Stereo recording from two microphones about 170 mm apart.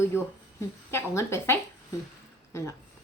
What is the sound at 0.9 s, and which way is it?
Speech, 15° left (ahead or behind).